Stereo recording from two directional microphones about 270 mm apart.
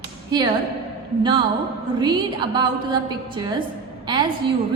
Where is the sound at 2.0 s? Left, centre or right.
Centre.